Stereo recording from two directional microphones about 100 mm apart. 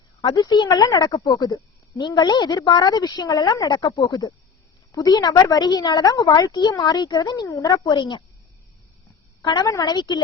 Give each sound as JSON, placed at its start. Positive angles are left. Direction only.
{"t": 0.2, "sound": "a woman's voice", "side_deg": 45}
{"t": 4.9, "sound": "a woman's voice", "side_deg": 40}
{"t": 9.4, "sound": "a woman's voice", "side_deg": 45}